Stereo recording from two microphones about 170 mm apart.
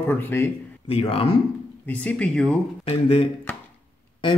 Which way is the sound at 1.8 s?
10° left (ahead or behind).